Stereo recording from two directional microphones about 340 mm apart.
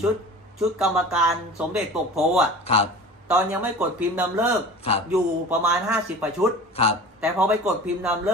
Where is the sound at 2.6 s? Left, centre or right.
Centre.